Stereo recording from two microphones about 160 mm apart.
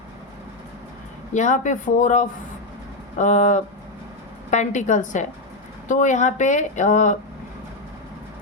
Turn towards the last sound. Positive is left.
turn(degrees=50)  # may be behind; listen again after turning